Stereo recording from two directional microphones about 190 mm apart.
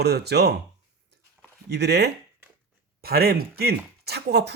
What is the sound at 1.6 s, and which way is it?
Speech, 60° right (ahead or behind).